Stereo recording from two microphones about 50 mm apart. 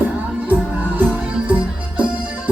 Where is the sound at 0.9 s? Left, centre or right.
Right.